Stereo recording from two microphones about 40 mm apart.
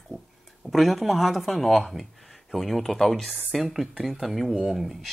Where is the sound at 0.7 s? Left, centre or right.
Centre.